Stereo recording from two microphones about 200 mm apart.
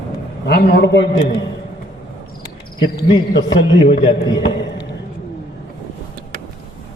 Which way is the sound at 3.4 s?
70° left (ahead or behind).